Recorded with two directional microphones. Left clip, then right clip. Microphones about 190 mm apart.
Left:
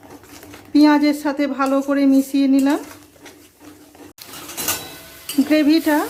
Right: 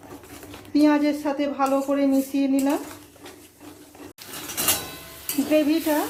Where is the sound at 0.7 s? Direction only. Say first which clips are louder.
Left 6 dB; 25° left (ahead or behind).